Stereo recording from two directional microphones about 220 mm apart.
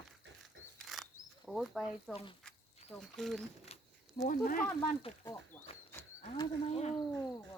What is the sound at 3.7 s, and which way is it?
Cat, 30° left (ahead or behind).